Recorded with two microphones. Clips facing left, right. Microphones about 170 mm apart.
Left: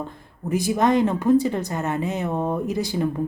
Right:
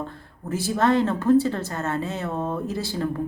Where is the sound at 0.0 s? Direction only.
15° left (ahead or behind).